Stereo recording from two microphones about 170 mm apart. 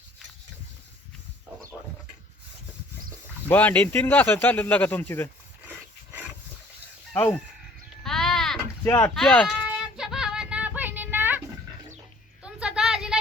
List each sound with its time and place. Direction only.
3.5 s speech: 10° left (ahead or behind)
7.1 s speech: 10° left (ahead or behind)
8.0 s sheep: 5° left (ahead or behind)
8.8 s speech: 15° left (ahead or behind)
9.1 s speech: 5° left (ahead or behind)
9.5 s child singing: 5° right (ahead or behind)
12.4 s a sound: 5° right (ahead or behind)